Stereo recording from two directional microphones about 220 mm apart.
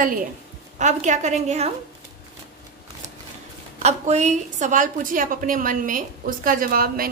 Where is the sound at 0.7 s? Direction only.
30° right (ahead or behind).